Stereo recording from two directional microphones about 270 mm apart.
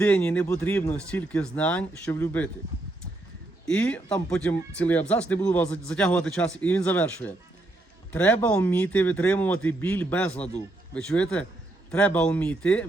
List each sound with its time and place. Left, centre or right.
0.0 s speech: centre
3.7 s speech: centre